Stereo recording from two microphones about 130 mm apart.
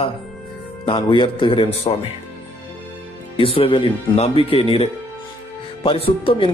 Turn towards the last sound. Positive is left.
turn(degrees=45)  # may be behind; listen again after turning